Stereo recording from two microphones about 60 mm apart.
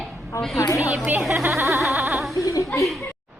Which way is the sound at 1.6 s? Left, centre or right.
Right.